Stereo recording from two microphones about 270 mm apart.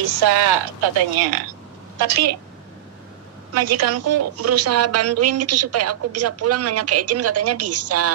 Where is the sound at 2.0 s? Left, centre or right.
Right.